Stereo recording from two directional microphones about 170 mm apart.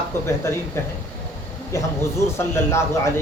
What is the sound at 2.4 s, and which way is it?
Speech, 15° left (ahead or behind).